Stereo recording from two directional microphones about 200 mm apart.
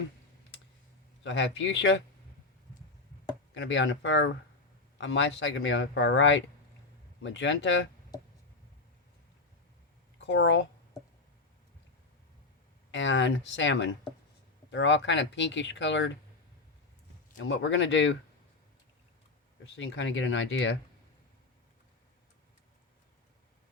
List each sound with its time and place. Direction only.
1.2 s speech: 65° left (ahead or behind)
3.5 s speech: 65° left (ahead or behind)
10.2 s speech: 65° left (ahead or behind)
12.9 s speech: 65° left (ahead or behind)
17.5 s speech: 70° left (ahead or behind)
19.7 s speech: 70° left (ahead or behind)